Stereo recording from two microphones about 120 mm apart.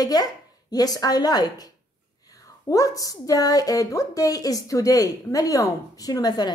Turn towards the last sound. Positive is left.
turn(degrees=35)  # may be behind; listen again after turning